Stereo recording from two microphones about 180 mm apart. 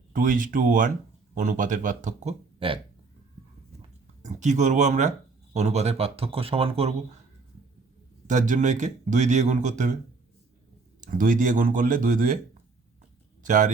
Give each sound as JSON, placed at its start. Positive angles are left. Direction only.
{"t": 0.1, "sound": "speech", "side_deg": -50}
{"t": 2.6, "sound": "speech", "side_deg": -30}
{"t": 3.8, "sound": "a sound", "side_deg": -40}
{"t": 5.5, "sound": "speech", "side_deg": -40}
{"t": 8.3, "sound": "speech", "side_deg": -45}
{"t": 11.0, "sound": "speech", "side_deg": -45}
{"t": 13.4, "sound": "speech", "side_deg": -45}